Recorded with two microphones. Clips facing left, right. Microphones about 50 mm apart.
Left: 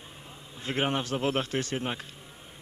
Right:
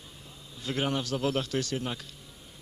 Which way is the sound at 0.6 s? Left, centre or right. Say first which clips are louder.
Left 1 dB; left.